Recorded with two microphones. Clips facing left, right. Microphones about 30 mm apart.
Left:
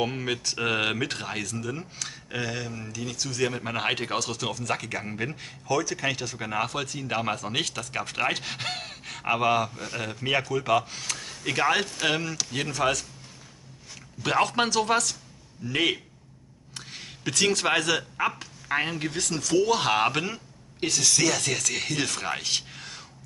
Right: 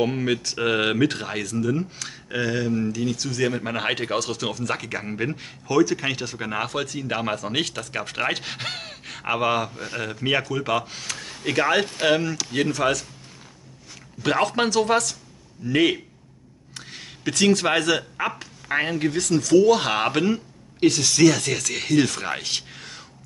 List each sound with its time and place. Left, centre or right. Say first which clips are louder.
0.0 s speech: right 5 dB; centre
11.8 s speech: right 4 dB; centre
12.1 s speech: right 6 dB; centre
14.2 s speech: right 2 dB; centre